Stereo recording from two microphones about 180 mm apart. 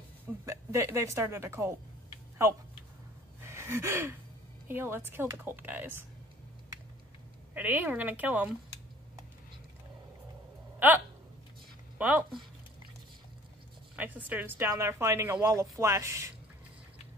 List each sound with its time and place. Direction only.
0.5 s speech: 15° right (ahead or behind)
3.4 s gasp: 15° right (ahead or behind)
4.6 s speech: 10° right (ahead or behind)
7.5 s speech: 10° right (ahead or behind)
10.8 s speech: 10° right (ahead or behind)
12.0 s speech: 10° right (ahead or behind)
13.9 s speech: 10° right (ahead or behind)